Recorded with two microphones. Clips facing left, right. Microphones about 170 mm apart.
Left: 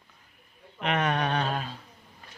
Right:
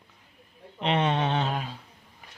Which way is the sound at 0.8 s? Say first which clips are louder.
Right 2 dB; 30° right (ahead or behind).